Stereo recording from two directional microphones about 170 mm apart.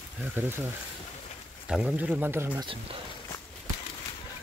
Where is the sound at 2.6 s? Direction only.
30° right (ahead or behind).